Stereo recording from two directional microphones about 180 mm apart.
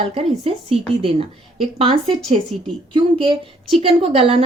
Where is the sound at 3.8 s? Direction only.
30° right (ahead or behind).